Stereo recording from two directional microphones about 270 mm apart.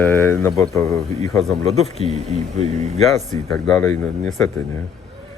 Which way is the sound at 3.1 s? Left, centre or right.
Centre.